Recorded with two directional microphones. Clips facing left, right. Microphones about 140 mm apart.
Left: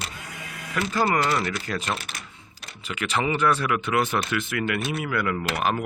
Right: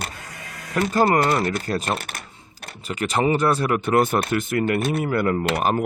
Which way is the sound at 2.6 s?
40° right (ahead or behind).